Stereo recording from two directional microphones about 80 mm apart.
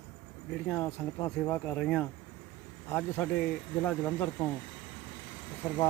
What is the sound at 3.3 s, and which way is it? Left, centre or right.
Speech, centre.